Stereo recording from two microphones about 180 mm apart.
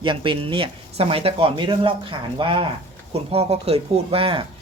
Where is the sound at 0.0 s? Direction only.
25° right (ahead or behind).